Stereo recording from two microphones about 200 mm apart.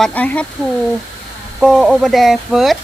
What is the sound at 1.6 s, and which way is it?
Speech, centre (ahead or behind).